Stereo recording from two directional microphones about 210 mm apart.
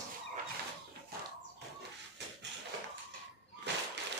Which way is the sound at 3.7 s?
55° right (ahead or behind).